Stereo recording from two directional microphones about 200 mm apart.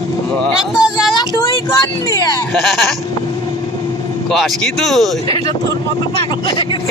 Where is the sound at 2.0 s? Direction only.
20° left (ahead or behind).